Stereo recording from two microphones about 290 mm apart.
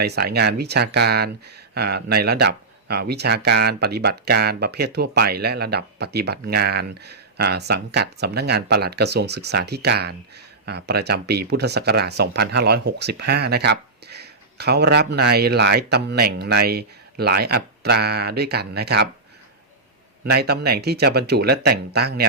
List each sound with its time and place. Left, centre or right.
0.0 s speech: right
20.2 s speech: right